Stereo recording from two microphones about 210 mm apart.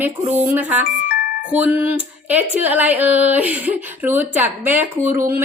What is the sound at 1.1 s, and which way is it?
Music, 45° left (ahead or behind).